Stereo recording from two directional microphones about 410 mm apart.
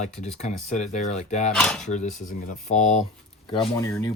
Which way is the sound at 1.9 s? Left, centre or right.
Centre.